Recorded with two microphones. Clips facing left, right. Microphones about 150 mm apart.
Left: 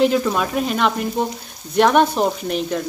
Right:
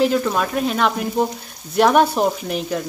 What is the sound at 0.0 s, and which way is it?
Speech, centre (ahead or behind).